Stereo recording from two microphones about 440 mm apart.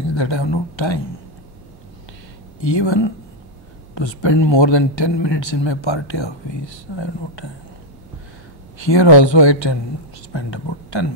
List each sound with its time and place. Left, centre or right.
0.1 s speech: left
2.7 s speech: left
8.9 s speech: left